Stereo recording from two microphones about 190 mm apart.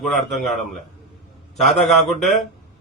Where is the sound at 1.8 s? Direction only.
Centre (ahead or behind).